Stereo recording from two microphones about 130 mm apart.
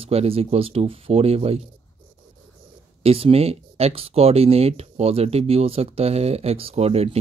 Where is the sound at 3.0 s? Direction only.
50° right (ahead or behind).